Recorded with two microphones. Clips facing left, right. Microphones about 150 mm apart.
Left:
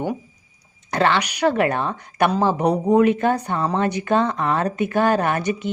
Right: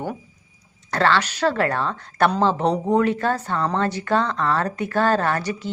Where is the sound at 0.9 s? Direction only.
20° left (ahead or behind).